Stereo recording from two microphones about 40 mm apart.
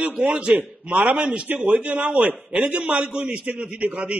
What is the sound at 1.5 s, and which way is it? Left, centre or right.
A man's voice, right.